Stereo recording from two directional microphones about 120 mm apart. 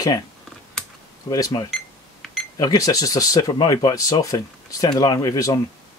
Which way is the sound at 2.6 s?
30° left (ahead or behind).